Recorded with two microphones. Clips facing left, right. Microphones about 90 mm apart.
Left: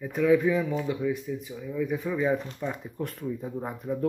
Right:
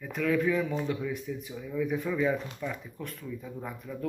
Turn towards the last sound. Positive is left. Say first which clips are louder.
# left 7 dB
turn(degrees=35)  # may be behind; listen again after turning